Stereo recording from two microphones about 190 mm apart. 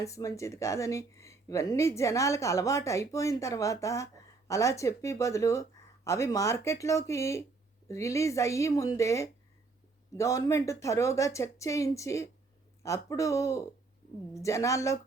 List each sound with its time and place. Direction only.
0.0 s speech: 15° left (ahead or behind)